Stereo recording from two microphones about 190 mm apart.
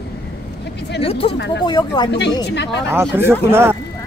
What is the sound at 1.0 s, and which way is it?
Speech, 30° left (ahead or behind).